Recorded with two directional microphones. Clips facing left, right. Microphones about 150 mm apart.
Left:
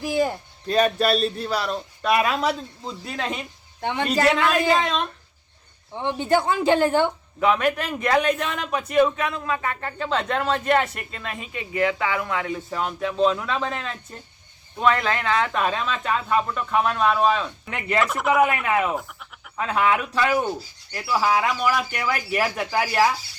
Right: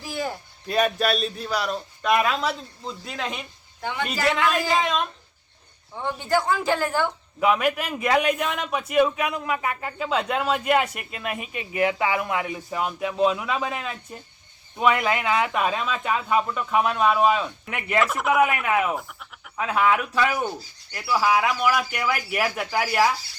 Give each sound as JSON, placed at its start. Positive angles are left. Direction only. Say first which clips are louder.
{"t": 0.0, "sound": "speech", "louder": "left 8 dB", "side_deg": 15}
{"t": 0.7, "sound": "speech", "louder": "left 3 dB", "side_deg": -5}
{"t": 3.8, "sound": "a woman's voice", "louder": "left 4 dB", "side_deg": 30}
{"t": 4.8, "sound": "speech", "louder": "even", "side_deg": -5}
{"t": 6.0, "sound": "a woman's voice", "louder": "left 3 dB", "side_deg": 20}
{"t": 7.3, "sound": "a man's voice", "louder": "even", "side_deg": -5}